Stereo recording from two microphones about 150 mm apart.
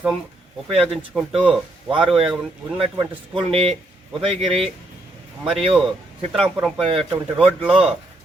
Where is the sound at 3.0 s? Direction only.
35° right (ahead or behind).